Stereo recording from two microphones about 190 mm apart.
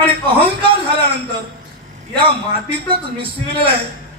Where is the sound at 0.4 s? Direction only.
25° right (ahead or behind).